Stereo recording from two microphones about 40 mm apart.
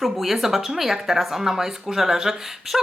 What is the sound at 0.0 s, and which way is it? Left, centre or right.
Speech, centre.